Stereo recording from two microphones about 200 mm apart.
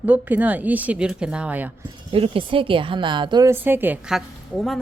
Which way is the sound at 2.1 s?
25° right (ahead or behind).